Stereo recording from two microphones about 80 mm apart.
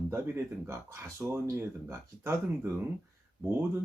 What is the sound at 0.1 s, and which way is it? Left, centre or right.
Speech, right.